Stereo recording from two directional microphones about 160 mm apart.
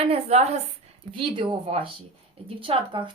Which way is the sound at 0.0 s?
40° right (ahead or behind).